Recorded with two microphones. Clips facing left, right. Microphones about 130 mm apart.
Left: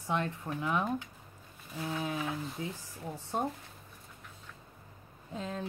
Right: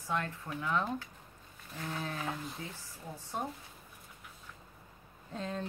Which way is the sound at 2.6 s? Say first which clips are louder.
Left 6 dB; 20° left (ahead or behind).